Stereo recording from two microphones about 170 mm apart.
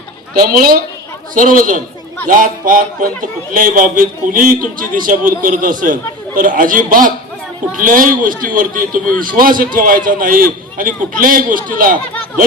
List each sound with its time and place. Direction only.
0.3 s a man's voice: 60° right (ahead or behind)